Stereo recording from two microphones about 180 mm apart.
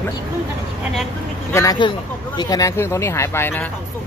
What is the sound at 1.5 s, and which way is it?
Speech, 20° left (ahead or behind).